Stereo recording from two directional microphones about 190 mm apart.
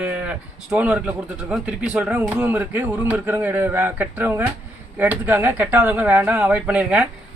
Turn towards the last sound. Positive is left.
turn(degrees=-5)  # may be behind; listen again after turning